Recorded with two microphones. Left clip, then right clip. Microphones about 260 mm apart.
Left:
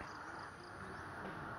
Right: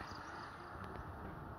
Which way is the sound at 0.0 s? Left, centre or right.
Centre.